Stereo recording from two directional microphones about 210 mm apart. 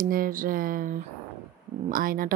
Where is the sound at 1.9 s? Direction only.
45° right (ahead or behind).